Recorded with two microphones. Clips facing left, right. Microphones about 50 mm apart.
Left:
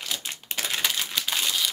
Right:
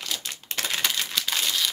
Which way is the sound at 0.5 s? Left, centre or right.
Centre.